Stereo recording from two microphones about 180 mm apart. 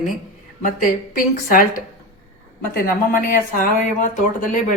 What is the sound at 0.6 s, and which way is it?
Speech, 50° left (ahead or behind).